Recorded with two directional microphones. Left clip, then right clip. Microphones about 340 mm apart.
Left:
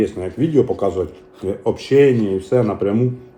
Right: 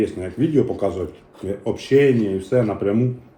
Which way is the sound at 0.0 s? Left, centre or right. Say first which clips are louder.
Left 2 dB; centre.